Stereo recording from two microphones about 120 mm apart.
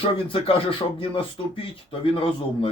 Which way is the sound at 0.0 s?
50° left (ahead or behind).